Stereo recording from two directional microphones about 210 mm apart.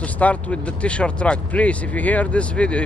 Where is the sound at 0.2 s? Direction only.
5° left (ahead or behind).